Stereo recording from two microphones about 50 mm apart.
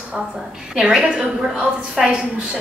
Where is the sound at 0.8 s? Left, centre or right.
Centre.